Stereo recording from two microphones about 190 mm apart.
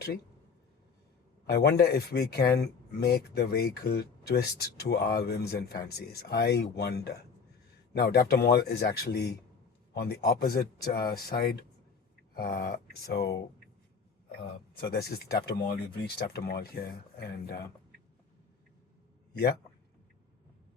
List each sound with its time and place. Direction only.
1.5 s speech: 60° left (ahead or behind)
19.3 s a man's voice: 55° left (ahead or behind)